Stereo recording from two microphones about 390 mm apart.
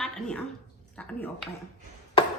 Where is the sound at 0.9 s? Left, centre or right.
Centre.